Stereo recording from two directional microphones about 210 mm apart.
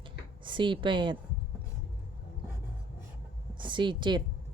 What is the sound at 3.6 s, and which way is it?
Speech, 20° right (ahead or behind).